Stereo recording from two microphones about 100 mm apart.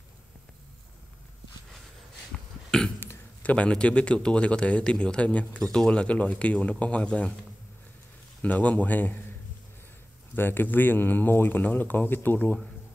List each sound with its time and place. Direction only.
2.3 s cough: 5° left (ahead or behind)
3.0 s a man's voice: 20° left (ahead or behind)
8.4 s a man's voice: 15° left (ahead or behind)
10.3 s speech: 20° left (ahead or behind)